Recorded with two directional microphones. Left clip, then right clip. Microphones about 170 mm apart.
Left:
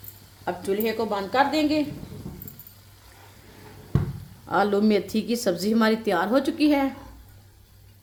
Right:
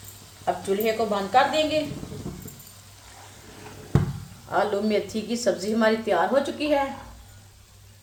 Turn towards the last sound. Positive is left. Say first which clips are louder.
# left 1 dB
turn(degrees=60)  # may be behind; listen again after turning